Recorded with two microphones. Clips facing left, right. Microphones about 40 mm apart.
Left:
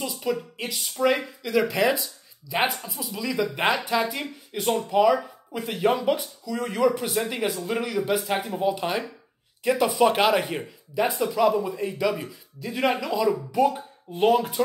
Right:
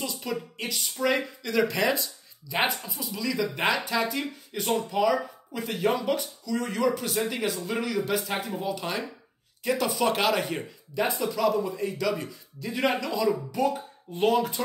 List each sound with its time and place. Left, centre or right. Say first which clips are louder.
0.0 s speech: left 4 dB; centre
8.5 s speech: left 6 dB; left
9.7 s speech: left 5 dB; centre
11.3 s speech: left 4 dB; centre
12.3 s speech: left 1 dB; centre